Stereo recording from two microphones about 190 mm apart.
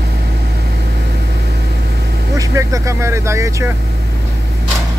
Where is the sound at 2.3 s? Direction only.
15° right (ahead or behind).